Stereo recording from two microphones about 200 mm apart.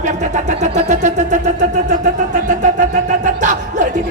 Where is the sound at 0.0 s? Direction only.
35° right (ahead or behind).